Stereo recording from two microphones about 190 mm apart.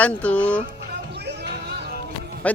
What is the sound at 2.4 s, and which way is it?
Music, 5° left (ahead or behind).